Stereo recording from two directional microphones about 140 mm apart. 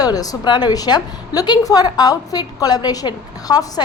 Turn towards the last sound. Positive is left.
turn(degrees=25)  # may be behind; listen again after turning